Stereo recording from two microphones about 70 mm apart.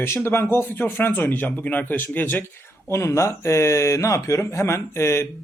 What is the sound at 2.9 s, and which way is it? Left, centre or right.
Speech, left.